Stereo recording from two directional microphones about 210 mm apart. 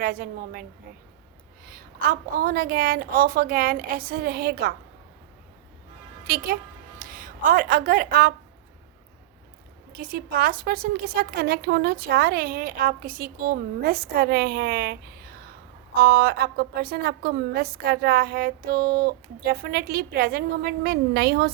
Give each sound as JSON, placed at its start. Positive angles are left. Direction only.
{"t": 0.0, "sound": "a woman's voice", "side_deg": -45}
{"t": 1.6, "sound": "a woman's voice", "side_deg": -45}
{"t": 6.2, "sound": "a woman's voice", "side_deg": -45}
{"t": 9.9, "sound": "a woman's voice", "side_deg": -45}
{"t": 16.0, "sound": "a woman's voice", "side_deg": -45}